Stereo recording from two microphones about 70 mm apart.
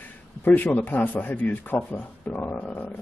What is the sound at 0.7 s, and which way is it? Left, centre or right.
Speech, left.